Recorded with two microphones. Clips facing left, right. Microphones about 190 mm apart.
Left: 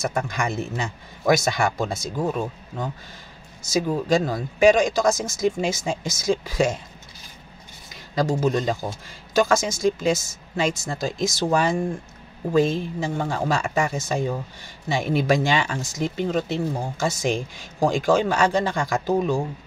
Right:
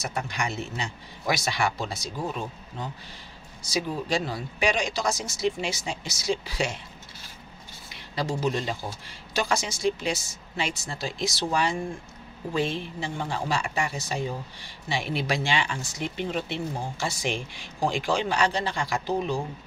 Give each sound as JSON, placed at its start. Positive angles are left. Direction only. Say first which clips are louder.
{"t": 0.0, "sound": "speech", "louder": "left 5 dB", "side_deg": 45}
{"t": 7.9, "sound": "speech", "louder": "left 7 dB", "side_deg": 45}